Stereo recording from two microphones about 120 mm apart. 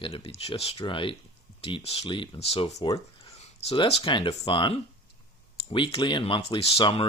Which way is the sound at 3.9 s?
60° left (ahead or behind).